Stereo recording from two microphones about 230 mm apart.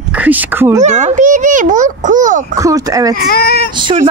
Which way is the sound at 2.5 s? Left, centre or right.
Centre.